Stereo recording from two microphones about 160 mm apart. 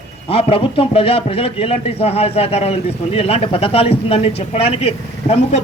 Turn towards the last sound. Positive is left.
turn(degrees=40)  # may be behind; listen again after turning